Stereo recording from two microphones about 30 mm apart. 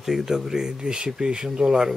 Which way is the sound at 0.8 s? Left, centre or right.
Right.